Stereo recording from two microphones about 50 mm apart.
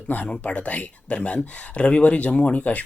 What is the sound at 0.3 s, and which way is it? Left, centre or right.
Speech, left.